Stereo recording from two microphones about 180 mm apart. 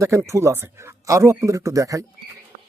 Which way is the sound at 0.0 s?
15° right (ahead or behind).